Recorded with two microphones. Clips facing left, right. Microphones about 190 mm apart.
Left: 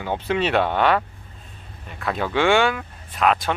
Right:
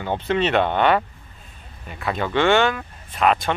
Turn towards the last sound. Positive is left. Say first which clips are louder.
# right 1 dB
turn(degrees=0)  # may be behind; listen again after turning